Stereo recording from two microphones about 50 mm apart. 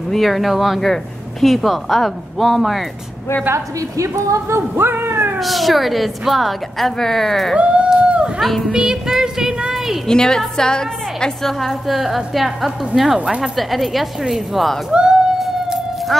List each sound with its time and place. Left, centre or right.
0.1 s a woman's voice: centre
3.5 s a woman's voice: right
4.6 s speech: right
5.4 s a woman's voice: centre
7.5 s a sound: right
8.4 s speech: centre
8.7 s speech: centre
10.0 s a woman's voice: centre
11.6 s a woman's voice: centre
14.9 s music: centre